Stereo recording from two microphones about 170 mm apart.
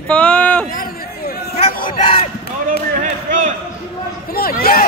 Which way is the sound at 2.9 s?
45° right (ahead or behind).